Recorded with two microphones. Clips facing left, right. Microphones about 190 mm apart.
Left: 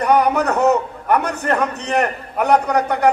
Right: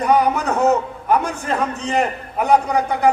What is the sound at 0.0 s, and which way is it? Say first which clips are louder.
A man's voice: left 1 dB; 65° left (ahead or behind).